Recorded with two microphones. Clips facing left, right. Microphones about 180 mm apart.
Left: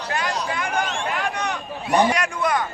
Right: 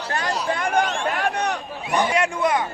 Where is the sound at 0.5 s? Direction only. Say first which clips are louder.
Right 3 dB; 50° right (ahead or behind).